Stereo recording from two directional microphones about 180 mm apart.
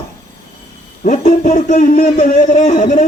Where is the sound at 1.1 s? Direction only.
50° left (ahead or behind).